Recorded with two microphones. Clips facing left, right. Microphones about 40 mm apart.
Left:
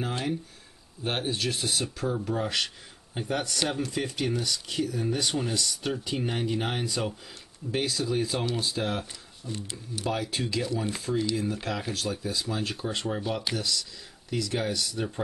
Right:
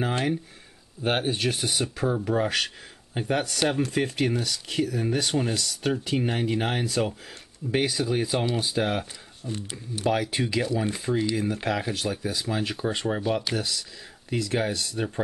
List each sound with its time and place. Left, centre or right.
1.0 s speech: right
7.7 s speech: right